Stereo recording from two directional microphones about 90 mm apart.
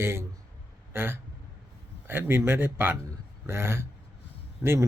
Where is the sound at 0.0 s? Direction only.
30° right (ahead or behind).